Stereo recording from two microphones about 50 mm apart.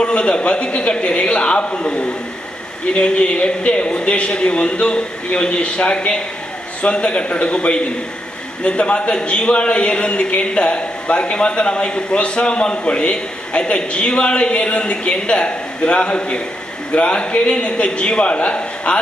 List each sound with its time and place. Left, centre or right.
0.0 s a man's voice: left